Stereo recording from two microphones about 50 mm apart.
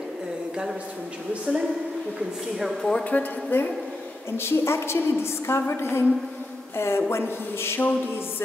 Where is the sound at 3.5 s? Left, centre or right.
Left.